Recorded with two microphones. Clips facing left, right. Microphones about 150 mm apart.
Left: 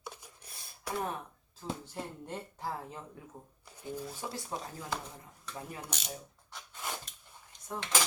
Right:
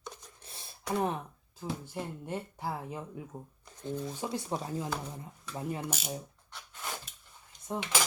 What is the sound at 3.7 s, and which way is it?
Speech, 10° left (ahead or behind).